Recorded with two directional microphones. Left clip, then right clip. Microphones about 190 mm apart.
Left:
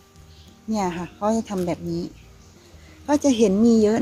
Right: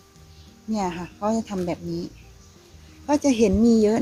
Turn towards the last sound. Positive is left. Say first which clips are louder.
# left 1 dB
turn(degrees=0)  # may be behind; listen again after turning